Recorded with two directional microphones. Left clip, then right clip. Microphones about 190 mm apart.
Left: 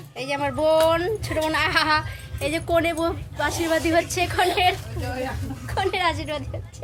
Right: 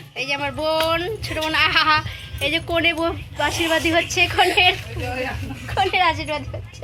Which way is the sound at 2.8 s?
10° right (ahead or behind).